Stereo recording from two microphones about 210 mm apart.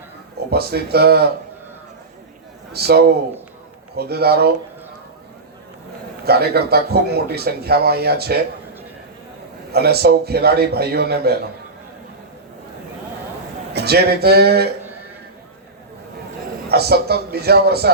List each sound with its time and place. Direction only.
0.5 s speech: 50° right (ahead or behind)
2.7 s speech: 50° right (ahead or behind)
6.2 s speech: 50° right (ahead or behind)
9.7 s speech: 50° right (ahead or behind)
13.7 s speech: 50° right (ahead or behind)
16.6 s speech: 50° right (ahead or behind)